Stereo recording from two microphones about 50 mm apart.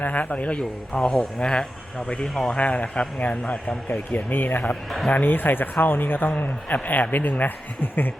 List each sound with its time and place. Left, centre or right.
0.0 s a man's voice: left
0.9 s a man's voice: centre
2.2 s a man's voice: centre
2.6 s a man's voice: left
4.3 s speech: left